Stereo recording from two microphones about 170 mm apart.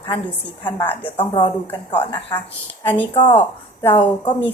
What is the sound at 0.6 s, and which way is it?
Speech, 30° left (ahead or behind).